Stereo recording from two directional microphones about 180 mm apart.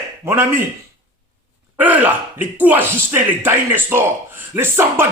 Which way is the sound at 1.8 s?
10° right (ahead or behind).